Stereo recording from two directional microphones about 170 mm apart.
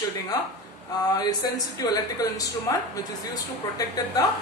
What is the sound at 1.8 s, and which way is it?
A man's voice, 20° left (ahead or behind).